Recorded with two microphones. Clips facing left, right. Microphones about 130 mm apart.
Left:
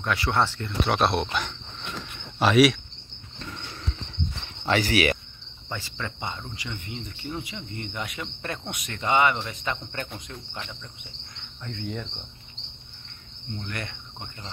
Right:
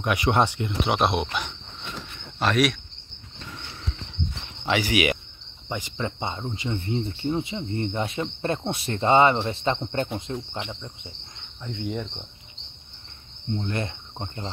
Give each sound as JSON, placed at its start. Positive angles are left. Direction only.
{"t": 0.0, "sound": "speech", "side_deg": -15}
{"t": 2.3, "sound": "cricket", "side_deg": 5}
{"t": 4.6, "sound": "cricket", "side_deg": -10}
{"t": 11.7, "sound": "cricket", "side_deg": -25}
{"t": 13.6, "sound": "cricket", "side_deg": -25}